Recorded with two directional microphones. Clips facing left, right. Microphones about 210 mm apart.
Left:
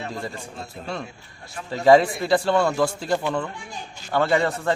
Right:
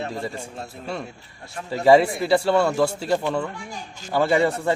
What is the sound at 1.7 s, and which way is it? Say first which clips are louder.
A man's voice: even; 5° right (ahead or behind).